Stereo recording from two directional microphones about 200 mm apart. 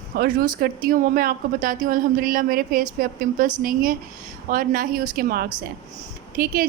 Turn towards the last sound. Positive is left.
turn(degrees=-45)  # may be behind; listen again after turning